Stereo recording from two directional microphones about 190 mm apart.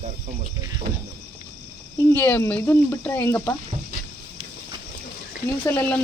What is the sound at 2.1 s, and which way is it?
Speech, 10° left (ahead or behind).